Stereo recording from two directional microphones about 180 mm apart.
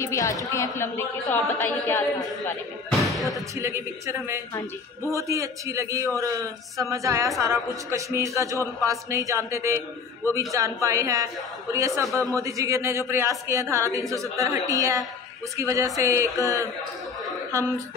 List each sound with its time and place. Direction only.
0.0 s speech: 15° left (ahead or behind)
3.2 s speech: centre (ahead or behind)
3.5 s a man's voice: 15° right (ahead or behind)